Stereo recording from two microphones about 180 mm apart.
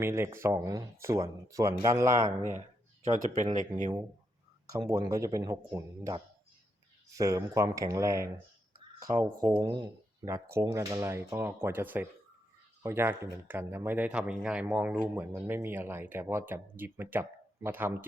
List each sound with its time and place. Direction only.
0.0 s speech: 15° right (ahead or behind)
3.0 s speech: 40° right (ahead or behind)
4.7 s speech: 20° right (ahead or behind)